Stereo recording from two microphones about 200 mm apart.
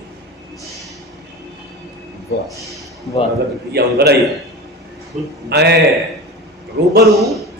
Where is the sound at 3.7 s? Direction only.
55° right (ahead or behind).